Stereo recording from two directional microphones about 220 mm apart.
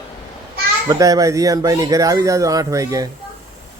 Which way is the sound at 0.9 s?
15° right (ahead or behind).